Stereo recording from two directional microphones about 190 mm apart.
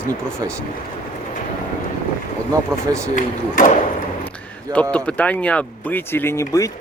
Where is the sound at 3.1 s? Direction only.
40° left (ahead or behind).